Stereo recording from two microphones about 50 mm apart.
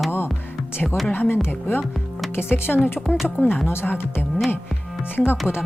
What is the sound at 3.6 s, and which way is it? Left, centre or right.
Speech, left.